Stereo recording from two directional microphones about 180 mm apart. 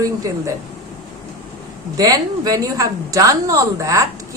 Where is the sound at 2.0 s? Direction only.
20° right (ahead or behind).